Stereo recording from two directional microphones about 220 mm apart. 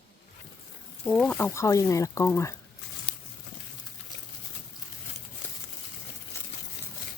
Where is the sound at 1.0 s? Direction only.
5° left (ahead or behind).